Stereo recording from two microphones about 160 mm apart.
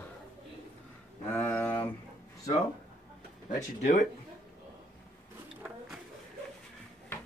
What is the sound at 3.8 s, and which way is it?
Speech, 50° left (ahead or behind).